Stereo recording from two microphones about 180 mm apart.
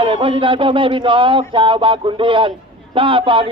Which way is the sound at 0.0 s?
30° right (ahead or behind).